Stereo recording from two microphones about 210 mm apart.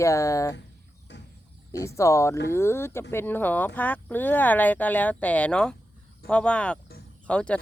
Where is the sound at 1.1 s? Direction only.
55° left (ahead or behind).